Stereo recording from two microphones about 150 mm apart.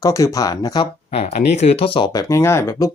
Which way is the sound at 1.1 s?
45° left (ahead or behind).